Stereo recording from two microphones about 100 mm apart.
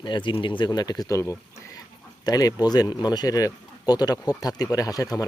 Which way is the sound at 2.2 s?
40° left (ahead or behind).